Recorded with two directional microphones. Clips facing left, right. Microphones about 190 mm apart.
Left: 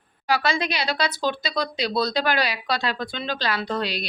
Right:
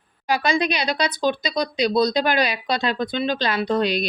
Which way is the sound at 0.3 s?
15° right (ahead or behind).